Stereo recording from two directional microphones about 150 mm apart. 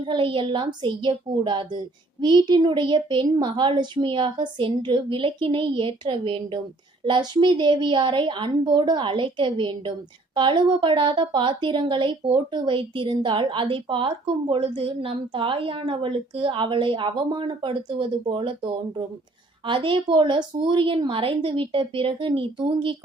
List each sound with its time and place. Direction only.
0.0 s a woman's voice: 35° right (ahead or behind)